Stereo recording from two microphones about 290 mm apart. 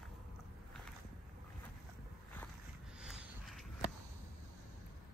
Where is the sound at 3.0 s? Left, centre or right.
Centre.